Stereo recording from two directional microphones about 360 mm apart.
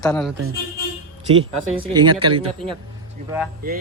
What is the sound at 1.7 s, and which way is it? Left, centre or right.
Speech, centre.